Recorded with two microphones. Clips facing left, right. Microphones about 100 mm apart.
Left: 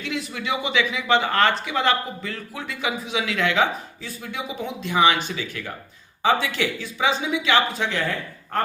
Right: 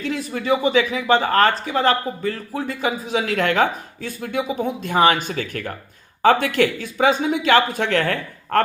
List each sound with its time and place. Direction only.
0.0 s speech: 40° right (ahead or behind); by 8.6 s 65° right (ahead or behind)